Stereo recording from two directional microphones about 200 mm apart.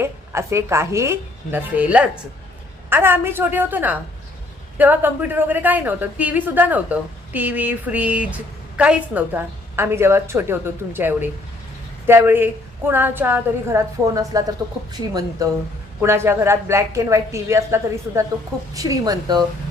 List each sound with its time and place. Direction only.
0.0 s a woman's voice: 15° right (ahead or behind)